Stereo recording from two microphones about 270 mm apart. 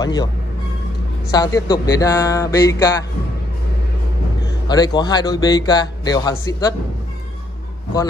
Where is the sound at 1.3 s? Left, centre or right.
Centre.